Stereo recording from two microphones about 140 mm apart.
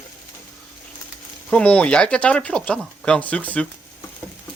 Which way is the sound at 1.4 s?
10° left (ahead or behind).